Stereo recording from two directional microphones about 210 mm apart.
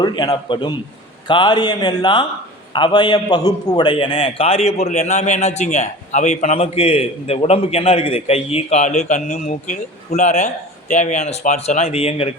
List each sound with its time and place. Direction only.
0.0 s a man's voice: 20° left (ahead or behind)